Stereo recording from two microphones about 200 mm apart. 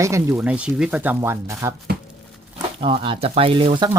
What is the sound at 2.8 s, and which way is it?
Speech, 25° right (ahead or behind).